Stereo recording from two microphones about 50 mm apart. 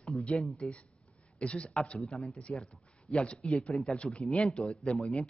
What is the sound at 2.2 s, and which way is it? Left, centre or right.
Speech, left.